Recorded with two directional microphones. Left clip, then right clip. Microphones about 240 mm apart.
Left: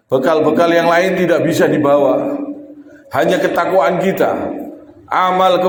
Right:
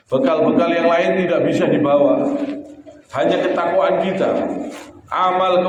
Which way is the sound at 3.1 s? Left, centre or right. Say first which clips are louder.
Left 3 dB; left.